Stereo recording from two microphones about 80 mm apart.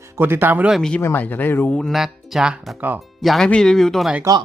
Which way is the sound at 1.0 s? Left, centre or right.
Left.